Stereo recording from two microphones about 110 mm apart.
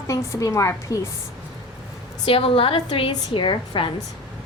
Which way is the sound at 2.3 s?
55° left (ahead or behind).